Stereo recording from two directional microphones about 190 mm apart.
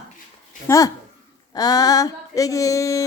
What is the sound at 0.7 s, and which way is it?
Speech, 10° left (ahead or behind).